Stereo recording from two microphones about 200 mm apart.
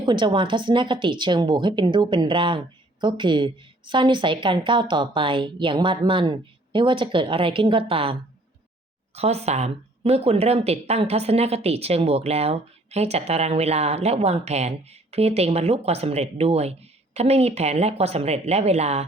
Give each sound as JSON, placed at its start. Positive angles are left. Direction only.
{"t": 0.0, "sound": "a woman's voice", "side_deg": -25}